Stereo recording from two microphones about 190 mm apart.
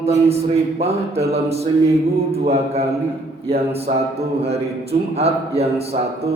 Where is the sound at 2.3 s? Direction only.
35° right (ahead or behind).